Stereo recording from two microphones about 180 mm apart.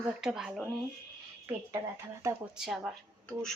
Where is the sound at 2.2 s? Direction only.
15° right (ahead or behind).